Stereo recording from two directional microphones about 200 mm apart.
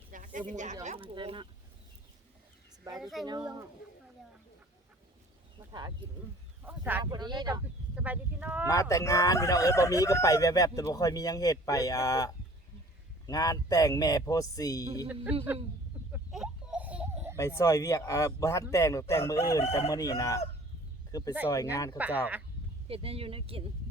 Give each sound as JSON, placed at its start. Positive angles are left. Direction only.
{"t": 0.1, "sound": "speech", "side_deg": -40}
{"t": 2.9, "sound": "a child's voice", "side_deg": 0}
{"t": 6.6, "sound": "speech", "side_deg": -10}
{"t": 7.0, "sound": "speech", "side_deg": -20}
{"t": 7.9, "sound": "speech", "side_deg": -5}
{"t": 8.6, "sound": "speech", "side_deg": 15}
{"t": 15.1, "sound": "speech", "side_deg": -5}
{"t": 16.1, "sound": "a sound", "side_deg": -5}
{"t": 17.3, "sound": "speech", "side_deg": 15}
{"t": 21.9, "sound": "speech", "side_deg": -10}
{"t": 22.9, "sound": "speech", "side_deg": -30}